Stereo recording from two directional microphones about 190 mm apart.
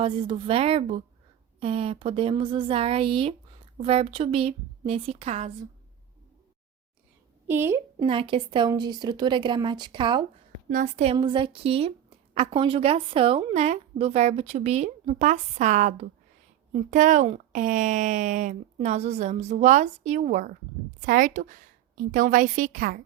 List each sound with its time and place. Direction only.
0.0 s a woman's voice: 30° right (ahead or behind)
7.4 s a woman's voice: 10° right (ahead or behind)
8.0 s a woman's voice: 30° right (ahead or behind)
10.7 s a woman's voice: 40° right (ahead or behind)